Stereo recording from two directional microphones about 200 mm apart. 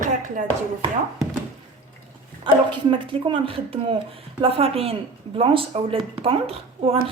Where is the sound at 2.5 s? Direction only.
25° right (ahead or behind).